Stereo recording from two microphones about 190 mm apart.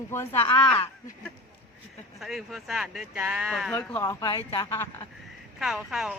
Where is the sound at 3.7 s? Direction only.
15° left (ahead or behind).